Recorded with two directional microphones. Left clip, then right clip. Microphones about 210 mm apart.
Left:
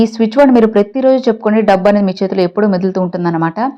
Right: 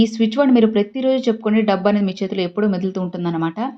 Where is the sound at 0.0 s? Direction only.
30° left (ahead or behind).